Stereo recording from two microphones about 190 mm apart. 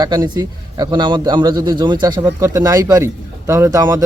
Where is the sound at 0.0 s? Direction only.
20° right (ahead or behind).